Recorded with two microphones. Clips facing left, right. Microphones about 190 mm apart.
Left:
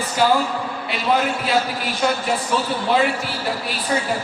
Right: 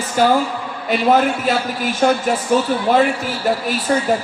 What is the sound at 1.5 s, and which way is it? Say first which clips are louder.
Speech: right 2 dB; 45° right (ahead or behind).